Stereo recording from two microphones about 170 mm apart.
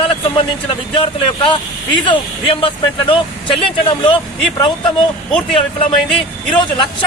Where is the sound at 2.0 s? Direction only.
30° left (ahead or behind).